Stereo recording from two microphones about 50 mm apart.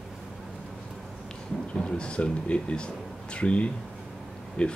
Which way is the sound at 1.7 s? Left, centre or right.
Centre.